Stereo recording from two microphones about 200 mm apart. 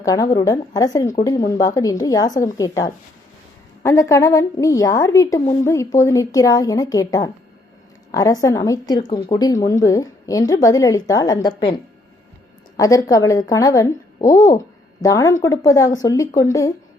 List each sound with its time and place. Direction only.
0.0 s a woman's voice: 20° left (ahead or behind)